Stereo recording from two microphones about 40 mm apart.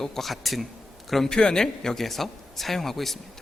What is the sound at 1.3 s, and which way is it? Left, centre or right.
A man's voice, centre.